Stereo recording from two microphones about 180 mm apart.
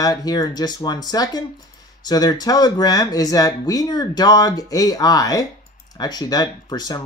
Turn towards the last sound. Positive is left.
turn(degrees=20)  # may be behind; listen again after turning